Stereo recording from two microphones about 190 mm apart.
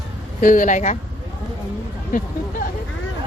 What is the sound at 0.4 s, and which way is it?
Speech, 45° left (ahead or behind).